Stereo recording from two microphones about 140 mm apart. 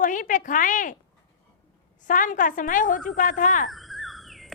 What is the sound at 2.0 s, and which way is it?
A woman's voice, 70° left (ahead or behind).